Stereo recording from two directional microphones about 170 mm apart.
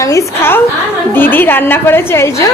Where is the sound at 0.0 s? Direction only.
20° left (ahead or behind).